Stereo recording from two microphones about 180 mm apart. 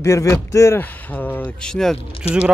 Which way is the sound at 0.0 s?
15° left (ahead or behind).